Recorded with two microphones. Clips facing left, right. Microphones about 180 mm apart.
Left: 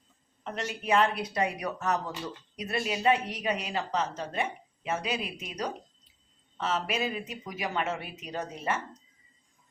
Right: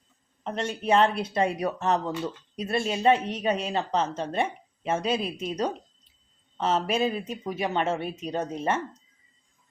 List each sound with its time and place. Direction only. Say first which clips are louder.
0.4 s speech: right 5 dB; 30° right (ahead or behind)